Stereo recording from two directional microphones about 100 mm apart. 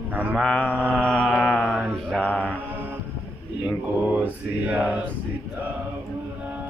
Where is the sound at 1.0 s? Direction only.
10° left (ahead or behind).